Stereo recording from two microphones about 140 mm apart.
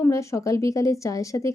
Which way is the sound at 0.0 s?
20° left (ahead or behind).